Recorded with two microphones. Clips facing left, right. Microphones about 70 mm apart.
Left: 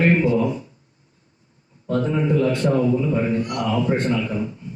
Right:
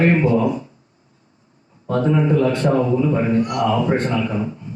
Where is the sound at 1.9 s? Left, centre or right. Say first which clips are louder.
Right 3 dB; right.